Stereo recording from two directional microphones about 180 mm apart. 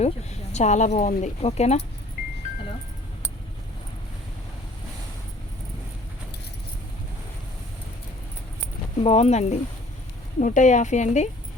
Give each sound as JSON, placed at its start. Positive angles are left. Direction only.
{"t": 0.0, "sound": "speech", "side_deg": 40}
{"t": 9.0, "sound": "speech", "side_deg": 35}